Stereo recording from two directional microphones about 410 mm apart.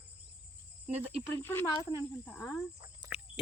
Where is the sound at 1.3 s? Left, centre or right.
Centre.